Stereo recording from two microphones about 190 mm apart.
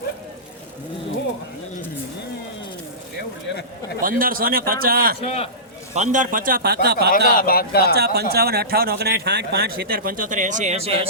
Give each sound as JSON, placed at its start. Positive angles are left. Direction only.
{"t": 4.0, "sound": "speech", "side_deg": -50}
{"t": 5.2, "sound": "speech", "side_deg": 30}
{"t": 5.9, "sound": "speech", "side_deg": -40}
{"t": 7.3, "sound": "speech", "side_deg": 50}
{"t": 7.9, "sound": "speech", "side_deg": -60}